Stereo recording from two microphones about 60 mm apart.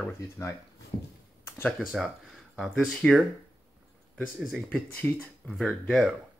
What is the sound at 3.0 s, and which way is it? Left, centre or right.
Speech, centre.